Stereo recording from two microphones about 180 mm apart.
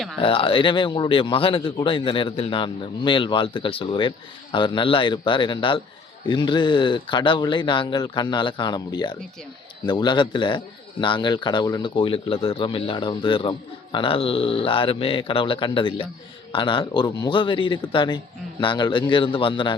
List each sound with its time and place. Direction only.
0.2 s speech: 30° left (ahead or behind)